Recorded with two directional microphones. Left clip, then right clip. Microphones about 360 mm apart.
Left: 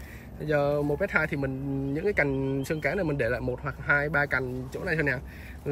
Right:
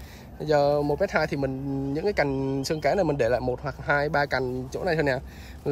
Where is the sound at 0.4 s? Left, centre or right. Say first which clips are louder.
Right 4 dB; centre.